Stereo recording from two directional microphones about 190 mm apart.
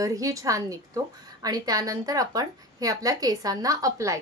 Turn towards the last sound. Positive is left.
turn(degrees=-15)  # may be behind; listen again after turning